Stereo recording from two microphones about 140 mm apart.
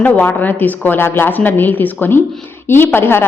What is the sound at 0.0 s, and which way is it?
A woman's voice, 10° left (ahead or behind).